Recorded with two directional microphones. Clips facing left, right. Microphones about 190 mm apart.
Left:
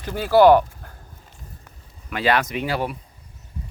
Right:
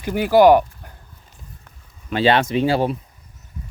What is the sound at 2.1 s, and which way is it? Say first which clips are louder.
Speech: right 4 dB; 30° right (ahead or behind).